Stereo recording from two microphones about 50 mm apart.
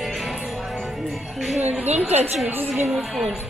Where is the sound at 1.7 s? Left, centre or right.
Right.